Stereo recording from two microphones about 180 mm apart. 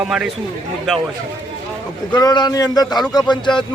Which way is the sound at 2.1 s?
20° left (ahead or behind).